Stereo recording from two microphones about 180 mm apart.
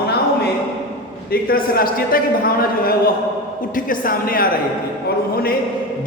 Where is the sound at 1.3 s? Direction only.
55° left (ahead or behind).